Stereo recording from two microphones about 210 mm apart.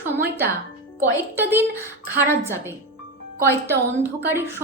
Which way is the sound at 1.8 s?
10° right (ahead or behind).